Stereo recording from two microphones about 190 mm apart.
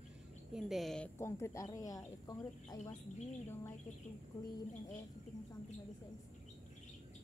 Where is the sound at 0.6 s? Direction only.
Centre (ahead or behind).